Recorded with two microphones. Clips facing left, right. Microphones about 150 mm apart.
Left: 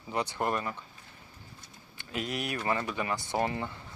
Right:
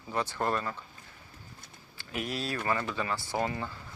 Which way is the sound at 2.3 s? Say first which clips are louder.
Even; 20° left (ahead or behind).